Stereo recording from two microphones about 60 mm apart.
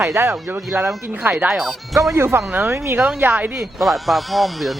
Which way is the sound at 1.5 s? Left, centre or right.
Centre.